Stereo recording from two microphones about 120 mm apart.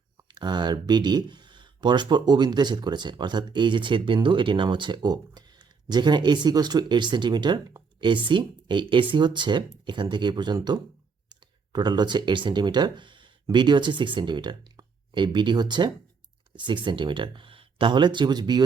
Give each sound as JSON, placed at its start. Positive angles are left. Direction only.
{"t": 0.3, "sound": "speech", "side_deg": -35}